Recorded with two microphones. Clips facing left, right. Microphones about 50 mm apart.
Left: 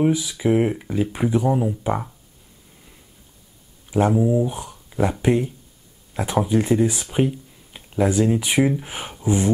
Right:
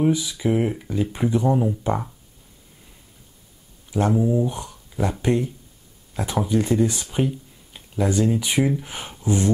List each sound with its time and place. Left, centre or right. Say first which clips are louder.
0.0 s speech: left 1 dB; centre
3.9 s speech: left 2 dB; centre